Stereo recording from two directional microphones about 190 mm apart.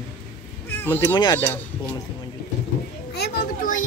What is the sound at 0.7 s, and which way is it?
Cat, 10° left (ahead or behind).